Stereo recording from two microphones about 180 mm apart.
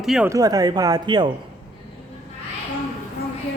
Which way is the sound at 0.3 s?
20° right (ahead or behind).